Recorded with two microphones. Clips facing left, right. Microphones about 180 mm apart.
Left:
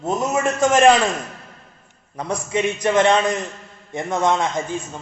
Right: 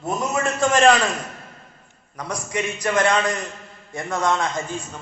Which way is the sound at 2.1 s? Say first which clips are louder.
Left 4 dB; 25° left (ahead or behind).